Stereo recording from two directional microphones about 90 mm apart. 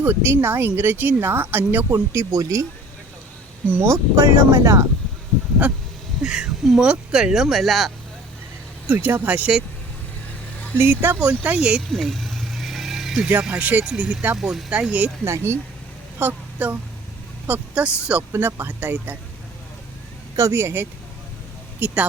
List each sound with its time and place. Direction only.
0.0 s speech: 20° right (ahead or behind)
3.7 s speech: 30° right (ahead or behind)
6.2 s speech: 10° right (ahead or behind)
8.9 s speech: 20° right (ahead or behind)
10.8 s speech: 25° right (ahead or behind)
11.2 s speech: 15° right (ahead or behind)
11.9 s vehicle: centre (ahead or behind)
13.1 s speech: 15° right (ahead or behind)
14.3 s speech: 5° right (ahead or behind)
14.7 s a woman's voice: 15° right (ahead or behind)
18.3 s speech: 30° right (ahead or behind)
20.5 s speech: 25° right (ahead or behind)